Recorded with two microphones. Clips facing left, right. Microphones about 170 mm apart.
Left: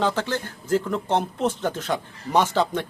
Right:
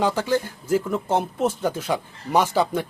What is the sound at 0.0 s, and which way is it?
Speech, 10° right (ahead or behind).